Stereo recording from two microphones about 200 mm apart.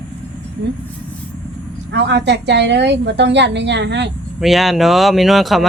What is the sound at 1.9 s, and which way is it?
A woman's voice, 60° right (ahead or behind).